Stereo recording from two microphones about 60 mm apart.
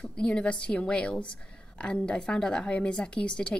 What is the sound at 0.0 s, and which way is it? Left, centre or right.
Speech, centre.